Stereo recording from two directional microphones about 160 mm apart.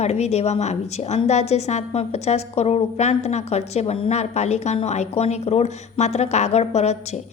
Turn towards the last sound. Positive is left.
turn(degrees=45)  # may be behind; listen again after turning